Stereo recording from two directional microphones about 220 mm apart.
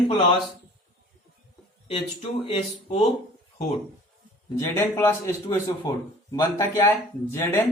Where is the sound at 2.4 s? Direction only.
25° left (ahead or behind).